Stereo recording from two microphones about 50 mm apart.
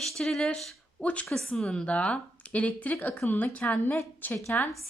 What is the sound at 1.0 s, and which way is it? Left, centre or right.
Speech, left.